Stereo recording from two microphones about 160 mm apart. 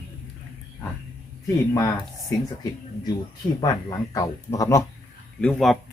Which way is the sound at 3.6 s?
25° left (ahead or behind).